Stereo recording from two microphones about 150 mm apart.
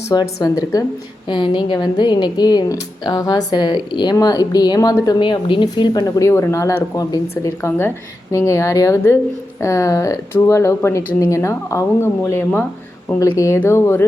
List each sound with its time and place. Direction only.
0.1 s a woman's voice: 25° left (ahead or behind)